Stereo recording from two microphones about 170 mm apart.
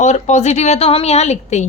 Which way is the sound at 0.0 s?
45° left (ahead or behind).